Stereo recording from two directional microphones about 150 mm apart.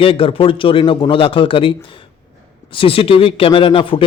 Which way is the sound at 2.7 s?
40° left (ahead or behind).